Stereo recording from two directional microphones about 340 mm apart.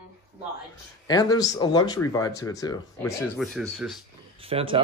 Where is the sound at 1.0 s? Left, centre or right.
Centre.